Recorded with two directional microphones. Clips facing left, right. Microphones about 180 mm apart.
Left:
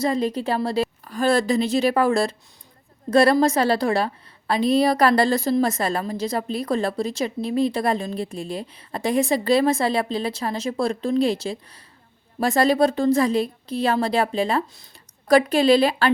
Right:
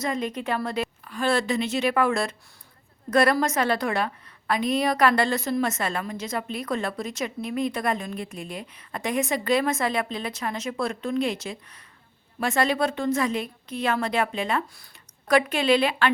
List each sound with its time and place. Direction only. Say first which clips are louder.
0.0 s a woman's voice: left 6 dB; 30° left (ahead or behind)